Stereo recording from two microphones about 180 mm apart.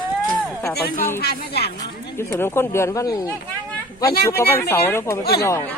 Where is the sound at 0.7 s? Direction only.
60° left (ahead or behind).